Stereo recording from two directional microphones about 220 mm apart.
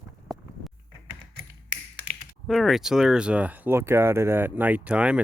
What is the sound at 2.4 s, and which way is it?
Speech, centre (ahead or behind).